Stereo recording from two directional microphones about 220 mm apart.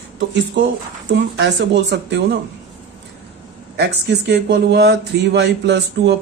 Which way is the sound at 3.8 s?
50° right (ahead or behind).